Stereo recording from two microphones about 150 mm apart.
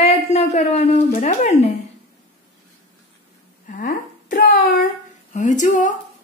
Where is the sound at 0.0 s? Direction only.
45° left (ahead or behind).